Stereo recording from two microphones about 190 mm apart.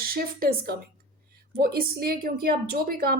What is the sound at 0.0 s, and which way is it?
A woman's voice, 50° right (ahead or behind).